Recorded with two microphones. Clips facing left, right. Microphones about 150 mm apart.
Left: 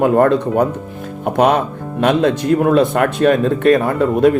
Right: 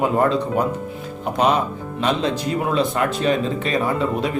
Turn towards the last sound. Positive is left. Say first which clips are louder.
# left 8 dB
turn(degrees=50)  # may be behind; listen again after turning